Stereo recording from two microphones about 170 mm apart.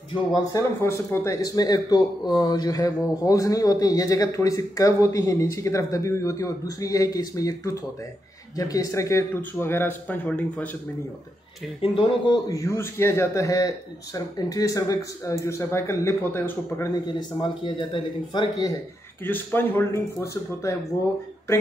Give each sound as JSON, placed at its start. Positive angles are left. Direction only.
{"t": 0.1, "sound": "a man's voice", "side_deg": 25}
{"t": 11.8, "sound": "a man's voice", "side_deg": 30}
{"t": 17.4, "sound": "speech", "side_deg": 30}
{"t": 19.2, "sound": "a man's voice", "side_deg": 10}